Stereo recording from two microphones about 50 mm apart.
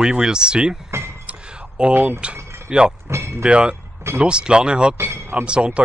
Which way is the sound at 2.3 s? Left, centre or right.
Right.